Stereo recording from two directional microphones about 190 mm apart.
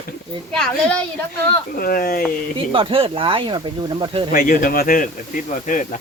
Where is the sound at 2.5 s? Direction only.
30° right (ahead or behind).